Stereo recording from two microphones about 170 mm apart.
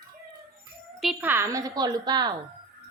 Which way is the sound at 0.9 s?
Centre (ahead or behind).